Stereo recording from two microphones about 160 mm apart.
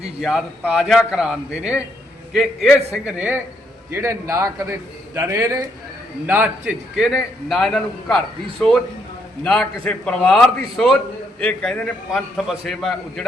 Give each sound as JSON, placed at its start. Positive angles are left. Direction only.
{"t": 0.2, "sound": "a man's voice", "side_deg": 0}